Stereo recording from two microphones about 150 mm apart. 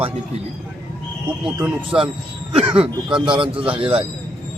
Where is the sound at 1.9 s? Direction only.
30° right (ahead or behind).